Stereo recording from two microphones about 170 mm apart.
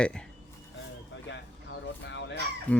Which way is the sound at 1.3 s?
90° left.